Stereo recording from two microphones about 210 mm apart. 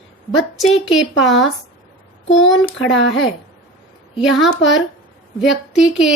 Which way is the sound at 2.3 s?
65° left (ahead or behind).